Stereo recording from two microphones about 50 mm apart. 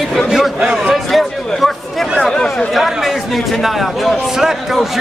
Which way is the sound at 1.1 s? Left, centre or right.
Centre.